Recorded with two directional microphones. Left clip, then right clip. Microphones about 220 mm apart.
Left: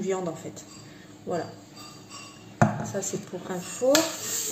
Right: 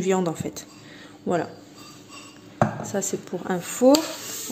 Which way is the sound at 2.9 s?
40° right (ahead or behind).